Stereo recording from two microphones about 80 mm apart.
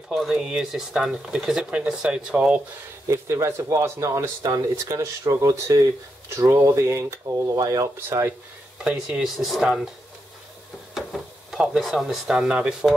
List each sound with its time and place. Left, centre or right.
0.1 s speech: centre
3.1 s speech: right
8.7 s speech: centre
11.0 s a sound: centre
11.8 s speech: centre